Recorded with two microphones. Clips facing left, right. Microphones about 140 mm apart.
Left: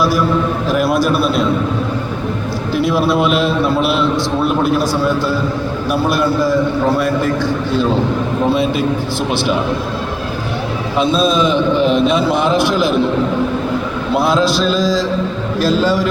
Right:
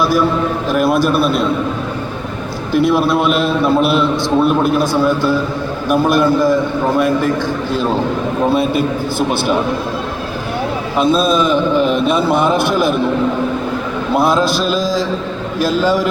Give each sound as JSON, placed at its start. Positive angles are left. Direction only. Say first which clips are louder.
{"t": 0.7, "sound": "a man's voice", "louder": "right 1 dB", "side_deg": -45}
{"t": 1.2, "sound": "a man's voice", "louder": "even", "side_deg": 0}
{"t": 2.7, "sound": "a man's voice", "louder": "right 3 dB", "side_deg": -50}
{"t": 3.1, "sound": "a man's voice", "louder": "even", "side_deg": 0}
{"t": 5.9, "sound": "a man's voice", "louder": "right 4 dB", "side_deg": -45}
{"t": 10.9, "sound": "a man's voice", "louder": "right 1 dB", "side_deg": 0}
{"t": 11.3, "sound": "a man's voice", "louder": "even", "side_deg": -50}
{"t": 14.2, "sound": "a man's voice", "louder": "even", "side_deg": -50}